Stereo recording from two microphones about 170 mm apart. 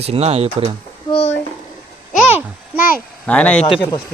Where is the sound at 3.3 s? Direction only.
5° left (ahead or behind).